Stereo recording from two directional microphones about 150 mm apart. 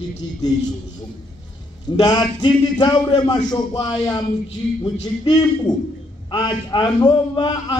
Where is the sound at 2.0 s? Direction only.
30° left (ahead or behind).